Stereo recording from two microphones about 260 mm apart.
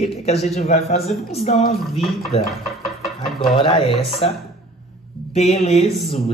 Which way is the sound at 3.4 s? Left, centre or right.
Centre.